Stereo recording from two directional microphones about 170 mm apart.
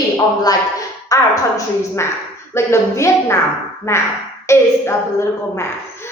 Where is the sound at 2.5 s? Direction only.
15° left (ahead or behind).